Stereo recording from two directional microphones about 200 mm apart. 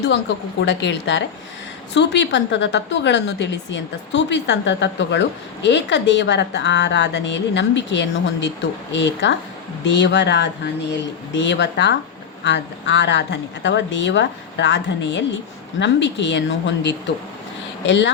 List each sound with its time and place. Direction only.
0.6 s a woman's voice: 60° left (ahead or behind)